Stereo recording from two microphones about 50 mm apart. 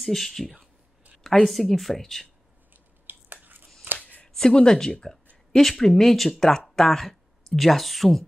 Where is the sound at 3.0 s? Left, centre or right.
Right.